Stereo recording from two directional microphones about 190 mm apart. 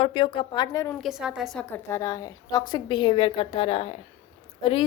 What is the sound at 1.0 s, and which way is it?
A woman's voice, centre (ahead or behind).